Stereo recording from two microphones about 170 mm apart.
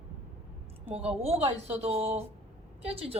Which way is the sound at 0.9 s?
35° right (ahead or behind).